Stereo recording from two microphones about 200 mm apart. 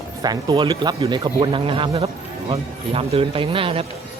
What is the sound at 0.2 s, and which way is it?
Speech, 20° right (ahead or behind).